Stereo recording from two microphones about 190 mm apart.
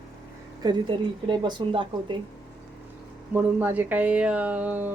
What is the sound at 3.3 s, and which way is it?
Speech, 10° right (ahead or behind).